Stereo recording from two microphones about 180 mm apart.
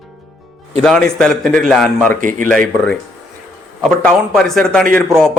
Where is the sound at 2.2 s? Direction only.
50° right (ahead or behind).